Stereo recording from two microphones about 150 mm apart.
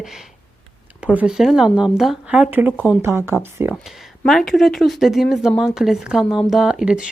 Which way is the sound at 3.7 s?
Centre (ahead or behind).